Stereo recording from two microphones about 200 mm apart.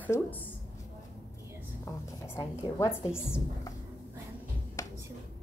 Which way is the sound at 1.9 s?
15° left (ahead or behind).